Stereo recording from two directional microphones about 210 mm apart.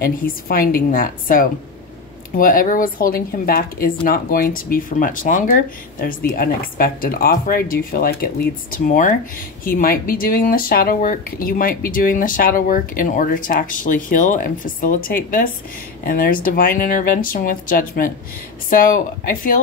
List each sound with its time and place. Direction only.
0.0 s speech: 45° left (ahead or behind)